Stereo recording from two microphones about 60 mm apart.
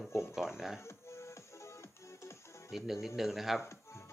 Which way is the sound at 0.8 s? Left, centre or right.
Left.